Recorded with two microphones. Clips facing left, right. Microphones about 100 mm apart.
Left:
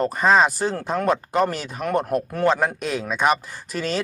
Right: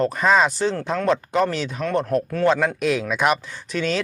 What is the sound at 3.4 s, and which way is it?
Speech, 45° left (ahead or behind).